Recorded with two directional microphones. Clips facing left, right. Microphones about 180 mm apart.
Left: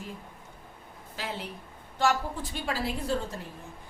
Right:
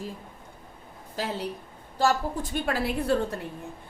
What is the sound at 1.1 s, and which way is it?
Speech, 40° right (ahead or behind).